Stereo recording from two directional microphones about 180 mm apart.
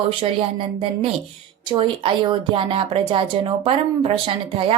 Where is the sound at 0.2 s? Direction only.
30° right (ahead or behind).